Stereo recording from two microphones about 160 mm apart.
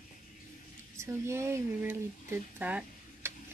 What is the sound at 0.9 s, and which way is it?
Speech, 15° right (ahead or behind).